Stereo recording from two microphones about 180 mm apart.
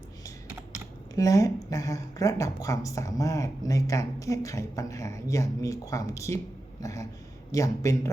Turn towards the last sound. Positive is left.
turn(degrees=20)  # may be behind; listen again after turning